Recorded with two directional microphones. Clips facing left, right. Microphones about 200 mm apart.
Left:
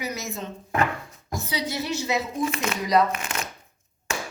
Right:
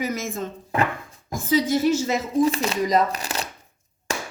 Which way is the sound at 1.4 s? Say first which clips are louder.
Right 10 dB; 50° right (ahead or behind).